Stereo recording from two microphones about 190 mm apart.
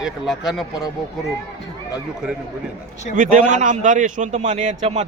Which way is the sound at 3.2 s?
40° right (ahead or behind).